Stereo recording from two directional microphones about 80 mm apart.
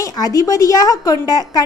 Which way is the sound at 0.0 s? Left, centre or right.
Left.